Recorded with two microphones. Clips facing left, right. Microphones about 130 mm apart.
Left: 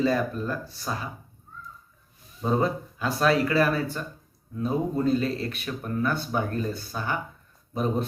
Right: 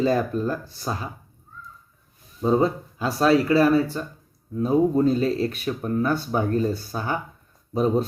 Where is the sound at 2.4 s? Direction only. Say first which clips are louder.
Right 4 dB; 25° right (ahead or behind).